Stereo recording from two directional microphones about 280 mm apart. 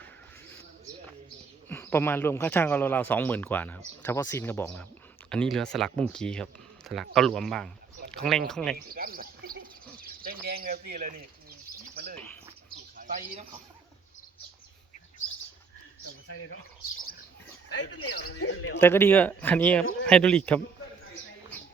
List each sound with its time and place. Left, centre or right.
1.7 s speech: centre
8.7 s speech: right
10.0 s bird: right
16.2 s speech: left
17.7 s speech: left
18.8 s speech: centre